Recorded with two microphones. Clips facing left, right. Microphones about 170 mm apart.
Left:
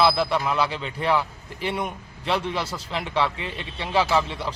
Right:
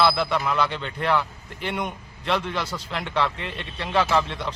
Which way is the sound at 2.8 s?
Centre (ahead or behind).